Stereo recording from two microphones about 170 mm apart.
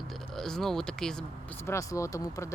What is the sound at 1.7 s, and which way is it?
Speech, 20° left (ahead or behind).